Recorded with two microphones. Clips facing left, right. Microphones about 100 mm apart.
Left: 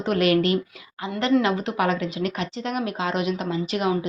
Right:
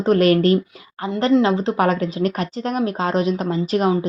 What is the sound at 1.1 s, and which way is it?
A woman's voice, 30° right (ahead or behind).